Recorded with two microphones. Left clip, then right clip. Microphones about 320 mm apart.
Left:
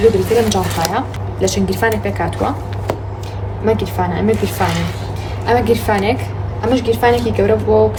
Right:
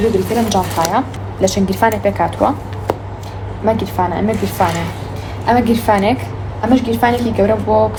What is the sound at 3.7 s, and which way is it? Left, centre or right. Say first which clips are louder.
A woman's voice: right 1 dB; centre.